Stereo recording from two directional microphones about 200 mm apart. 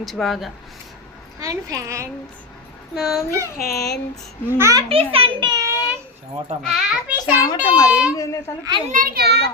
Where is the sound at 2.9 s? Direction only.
Centre (ahead or behind).